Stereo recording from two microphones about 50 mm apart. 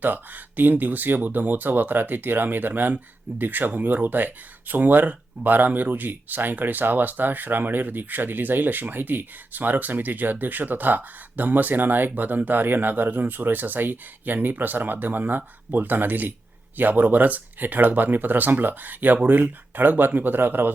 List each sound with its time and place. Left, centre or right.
0.0 s speech: right